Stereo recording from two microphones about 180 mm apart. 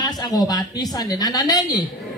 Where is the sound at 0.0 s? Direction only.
20° left (ahead or behind).